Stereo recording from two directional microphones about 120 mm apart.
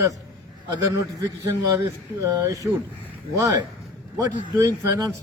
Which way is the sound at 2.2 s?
30° right (ahead or behind).